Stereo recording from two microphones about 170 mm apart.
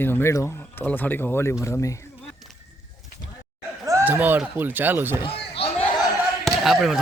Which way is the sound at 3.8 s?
15° right (ahead or behind).